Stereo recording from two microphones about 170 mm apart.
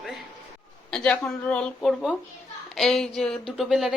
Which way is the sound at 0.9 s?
10° left (ahead or behind).